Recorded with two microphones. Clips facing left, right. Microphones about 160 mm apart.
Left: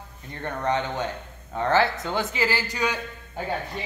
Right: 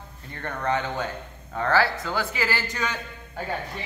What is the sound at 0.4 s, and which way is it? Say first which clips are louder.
A man's voice: left 1 dB; 20° left (ahead or behind).